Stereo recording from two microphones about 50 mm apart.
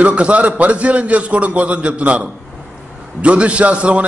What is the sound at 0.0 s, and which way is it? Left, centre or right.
A man's voice, right.